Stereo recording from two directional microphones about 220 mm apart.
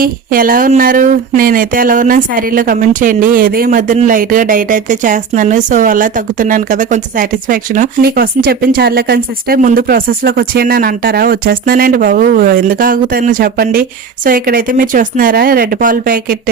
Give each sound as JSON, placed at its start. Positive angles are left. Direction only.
{"t": 0.0, "sound": "speech", "side_deg": -40}